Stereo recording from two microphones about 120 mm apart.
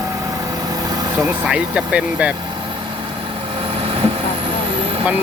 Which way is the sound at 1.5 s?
10° right (ahead or behind).